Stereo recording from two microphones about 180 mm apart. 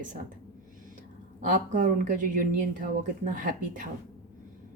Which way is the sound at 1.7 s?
45° right (ahead or behind).